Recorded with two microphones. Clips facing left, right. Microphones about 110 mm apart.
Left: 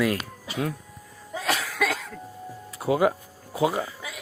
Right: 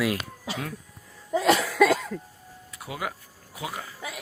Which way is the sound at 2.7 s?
30° left (ahead or behind).